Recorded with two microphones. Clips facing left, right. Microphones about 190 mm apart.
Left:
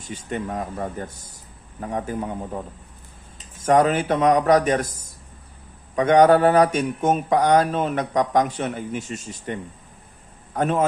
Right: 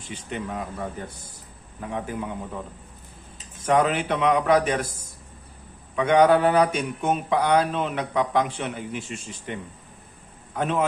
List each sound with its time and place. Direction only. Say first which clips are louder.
0.0 s speech: left 3 dB; 45° left (ahead or behind)
3.7 s speech: left 4 dB; 45° left (ahead or behind)
6.0 s speech: left 3 dB; 45° left (ahead or behind)